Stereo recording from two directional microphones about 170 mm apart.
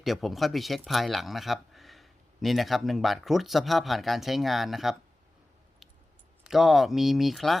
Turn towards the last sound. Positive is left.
turn(degrees=0)  # may be behind; listen again after turning